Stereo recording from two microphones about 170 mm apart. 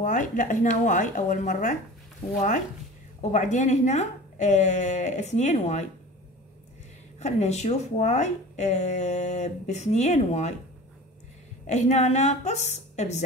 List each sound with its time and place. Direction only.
0.0 s speech: 50° left (ahead or behind)
3.2 s speech: 45° left (ahead or behind)
7.2 s speech: 40° left (ahead or behind)
11.6 s a woman's voice: 45° left (ahead or behind)